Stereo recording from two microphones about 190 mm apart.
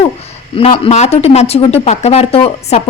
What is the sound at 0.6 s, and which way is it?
A woman's voice, 30° left (ahead or behind).